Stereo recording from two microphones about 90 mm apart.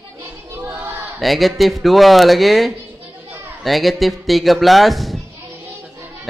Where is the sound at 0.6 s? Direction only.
25° right (ahead or behind).